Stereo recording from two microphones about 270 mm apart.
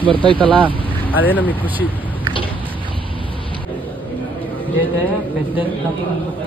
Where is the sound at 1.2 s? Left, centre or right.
Centre.